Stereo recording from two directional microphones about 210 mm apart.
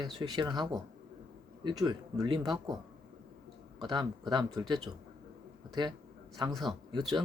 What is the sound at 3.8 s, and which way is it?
A man's voice, 20° right (ahead or behind).